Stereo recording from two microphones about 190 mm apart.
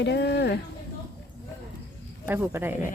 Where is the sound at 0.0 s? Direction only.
65° left (ahead or behind).